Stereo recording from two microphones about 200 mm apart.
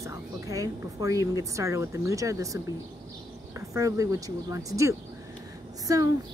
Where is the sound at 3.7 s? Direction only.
15° right (ahead or behind).